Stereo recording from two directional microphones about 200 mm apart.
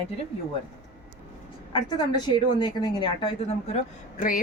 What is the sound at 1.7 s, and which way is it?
A woman's voice, 20° left (ahead or behind).